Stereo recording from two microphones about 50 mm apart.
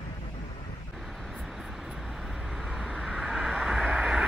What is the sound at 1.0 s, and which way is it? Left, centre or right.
Vehicle, centre.